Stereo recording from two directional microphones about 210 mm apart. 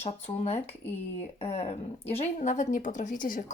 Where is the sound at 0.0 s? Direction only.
30° left (ahead or behind).